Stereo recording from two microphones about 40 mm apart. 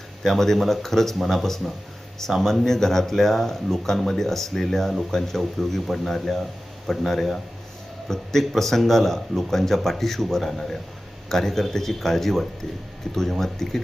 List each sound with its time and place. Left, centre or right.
0.2 s a man's voice: centre